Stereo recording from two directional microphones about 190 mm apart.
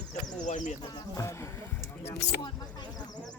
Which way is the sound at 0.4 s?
40° left (ahead or behind).